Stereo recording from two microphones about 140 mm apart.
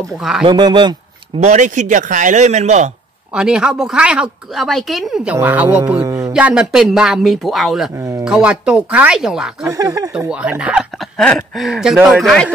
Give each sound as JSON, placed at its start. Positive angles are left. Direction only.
{"t": 0.2, "sound": "speech", "side_deg": -5}
{"t": 0.5, "sound": "a man's voice", "side_deg": -30}
{"t": 1.4, "sound": "a man's voice", "side_deg": -55}
{"t": 3.3, "sound": "speech", "side_deg": -5}
{"t": 5.9, "sound": "speech", "side_deg": -25}
{"t": 6.3, "sound": "speech", "side_deg": -5}
{"t": 9.7, "sound": "speech", "side_deg": -25}
{"t": 10.1, "sound": "speech", "side_deg": -5}